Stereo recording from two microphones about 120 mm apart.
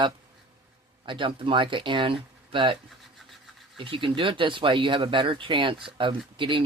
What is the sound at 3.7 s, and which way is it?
Speech, 45° right (ahead or behind).